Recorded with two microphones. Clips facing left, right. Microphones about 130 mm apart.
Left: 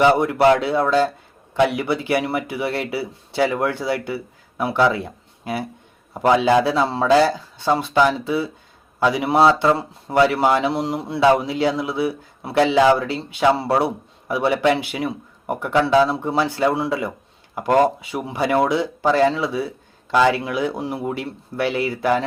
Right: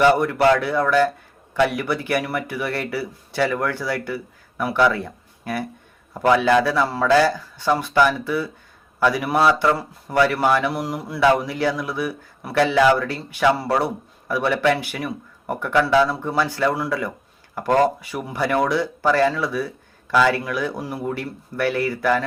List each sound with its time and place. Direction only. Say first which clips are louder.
0.0 s speech: left 1 dB; 20° left (ahead or behind)